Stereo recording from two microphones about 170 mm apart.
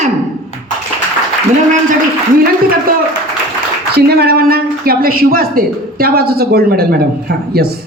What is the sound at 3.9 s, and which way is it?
Speech, 65° right (ahead or behind).